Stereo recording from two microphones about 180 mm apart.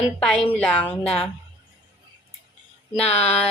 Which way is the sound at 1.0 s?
30° left (ahead or behind).